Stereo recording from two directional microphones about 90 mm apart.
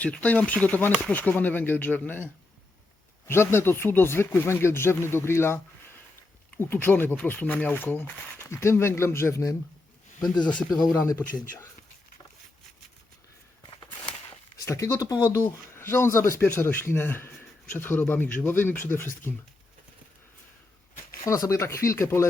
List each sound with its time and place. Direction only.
0.0 s speech: 15° left (ahead or behind)
6.6 s speech: 25° left (ahead or behind)
10.2 s speech: 55° left (ahead or behind)
14.6 s speech: 35° left (ahead or behind)
15.2 s speech: 30° left (ahead or behind)
21.2 s speech: 40° left (ahead or behind)